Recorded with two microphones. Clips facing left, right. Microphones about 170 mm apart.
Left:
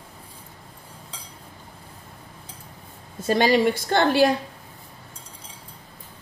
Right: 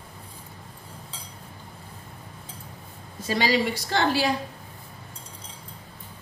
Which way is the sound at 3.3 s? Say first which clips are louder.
Left 5 dB; 50° left (ahead or behind).